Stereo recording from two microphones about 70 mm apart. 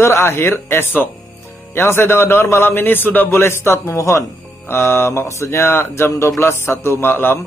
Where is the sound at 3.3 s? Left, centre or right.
Left.